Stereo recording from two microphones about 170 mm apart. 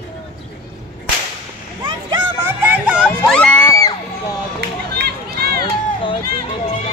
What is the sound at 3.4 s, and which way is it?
Music, 5° left (ahead or behind).